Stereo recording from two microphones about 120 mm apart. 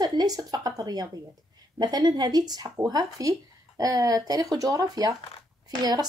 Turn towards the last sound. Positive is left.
turn(degrees=-35)  # may be behind; listen again after turning